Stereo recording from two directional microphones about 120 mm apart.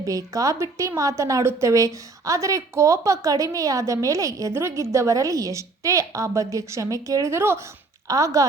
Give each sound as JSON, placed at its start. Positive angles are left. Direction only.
{"t": 0.0, "sound": "a woman's voice", "side_deg": -30}